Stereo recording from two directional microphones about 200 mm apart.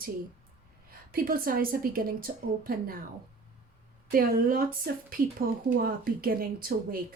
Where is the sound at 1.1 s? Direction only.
45° right (ahead or behind).